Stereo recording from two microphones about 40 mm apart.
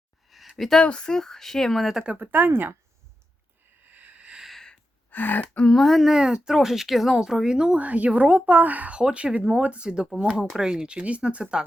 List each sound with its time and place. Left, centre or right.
0.3 s a sound: centre
0.8 s speech: left; by 2.0 s centre
2.1 s speech: right
2.5 s speech: right
3.9 s a sound: right
5.1 s speech: left
5.6 s speech: centre
6.2 s speech: centre
7.8 s a woman's voice: right
9.0 s speech: right